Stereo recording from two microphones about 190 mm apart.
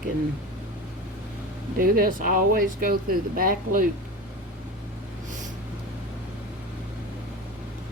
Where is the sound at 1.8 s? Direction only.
50° right (ahead or behind).